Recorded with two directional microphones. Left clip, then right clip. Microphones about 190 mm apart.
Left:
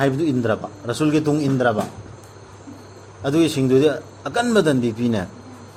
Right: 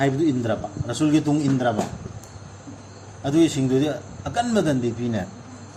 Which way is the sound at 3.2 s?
65° left (ahead or behind).